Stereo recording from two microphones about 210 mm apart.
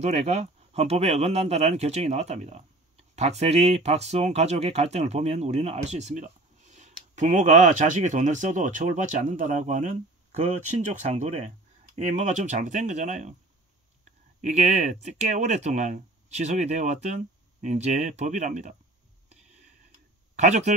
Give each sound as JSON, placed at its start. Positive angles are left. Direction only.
{"t": 0.0, "sound": "speech", "side_deg": -30}
{"t": 14.4, "sound": "speech", "side_deg": -30}
{"t": 20.3, "sound": "speech", "side_deg": -35}